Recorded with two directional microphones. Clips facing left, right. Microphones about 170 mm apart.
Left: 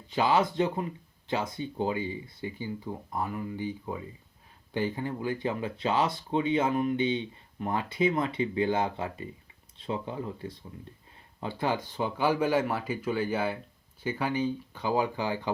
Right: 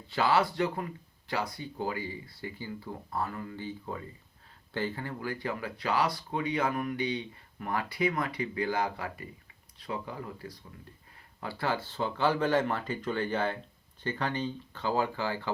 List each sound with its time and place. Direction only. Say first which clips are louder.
0.1 s speech: left 1 dB; 20° left (ahead or behind)